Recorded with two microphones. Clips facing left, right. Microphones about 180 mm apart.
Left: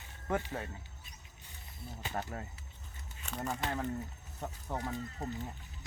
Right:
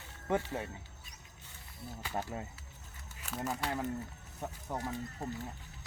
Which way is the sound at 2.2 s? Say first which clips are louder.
Right 1 dB; 15° right (ahead or behind).